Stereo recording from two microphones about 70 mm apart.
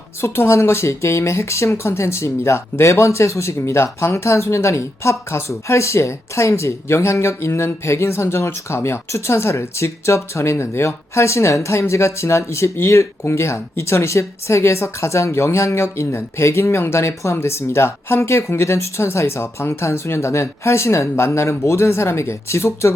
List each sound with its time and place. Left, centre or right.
0.2 s speech: left